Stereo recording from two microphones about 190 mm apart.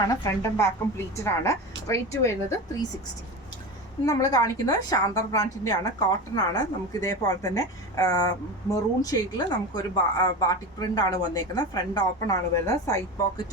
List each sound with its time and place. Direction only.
0.0 s a woman's voice: 15° left (ahead or behind)
4.0 s a woman's voice: 20° left (ahead or behind)